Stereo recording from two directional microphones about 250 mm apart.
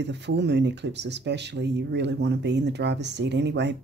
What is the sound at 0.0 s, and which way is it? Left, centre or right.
Speech, right.